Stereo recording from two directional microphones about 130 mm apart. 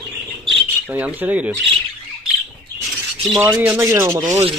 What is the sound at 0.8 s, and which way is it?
Speech, 10° right (ahead or behind).